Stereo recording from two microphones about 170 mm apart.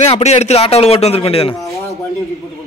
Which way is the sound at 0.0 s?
40° left (ahead or behind).